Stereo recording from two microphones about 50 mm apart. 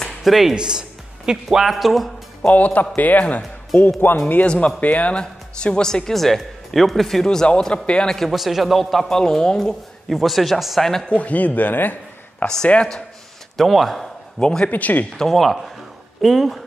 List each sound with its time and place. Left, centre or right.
0.2 s a man's voice: centre
2.5 s speech: left
4.0 s a man's voice: left
4.5 s speech: left; by 7.2 s centre
7.2 s speech: centre
8.2 s a man's voice: centre
9.2 s speech: centre
10.0 s a man's voice: centre
11.1 s speech: left
12.6 s speech: left
13.6 s a man's voice: centre
14.4 s speech: centre
14.7 s speech: left
15.1 s a man's voice: centre